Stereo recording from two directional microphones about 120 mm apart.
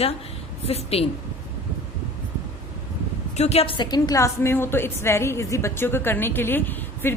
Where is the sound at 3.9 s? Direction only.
30° left (ahead or behind).